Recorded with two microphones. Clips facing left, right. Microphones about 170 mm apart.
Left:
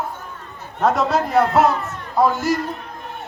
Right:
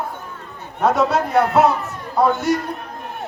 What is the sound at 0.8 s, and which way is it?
Speech, centre (ahead or behind).